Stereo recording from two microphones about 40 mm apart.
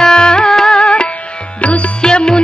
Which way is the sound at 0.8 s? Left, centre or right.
Left.